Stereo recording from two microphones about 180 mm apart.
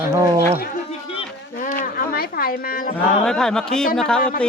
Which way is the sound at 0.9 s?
40° left (ahead or behind).